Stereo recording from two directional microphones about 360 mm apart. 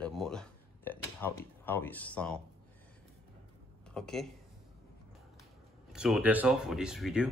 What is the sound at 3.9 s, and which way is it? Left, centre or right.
Speech, centre.